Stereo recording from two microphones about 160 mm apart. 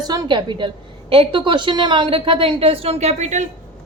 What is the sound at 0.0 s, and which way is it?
A woman's voice, 25° right (ahead or behind).